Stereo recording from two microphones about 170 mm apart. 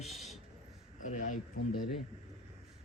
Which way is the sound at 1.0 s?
50° left (ahead or behind).